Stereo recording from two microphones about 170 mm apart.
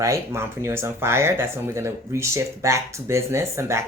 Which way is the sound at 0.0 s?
15° right (ahead or behind).